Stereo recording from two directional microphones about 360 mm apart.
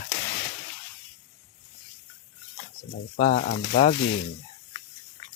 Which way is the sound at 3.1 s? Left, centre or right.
Centre.